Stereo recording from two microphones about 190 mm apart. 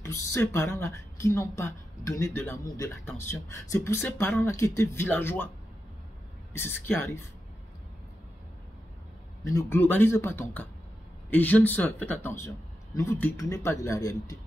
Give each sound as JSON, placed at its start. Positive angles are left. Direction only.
{"t": 0.0, "sound": "a man's voice", "side_deg": 15}
{"t": 6.5, "sound": "a man's voice", "side_deg": 10}
{"t": 9.4, "sound": "a man's voice", "side_deg": 15}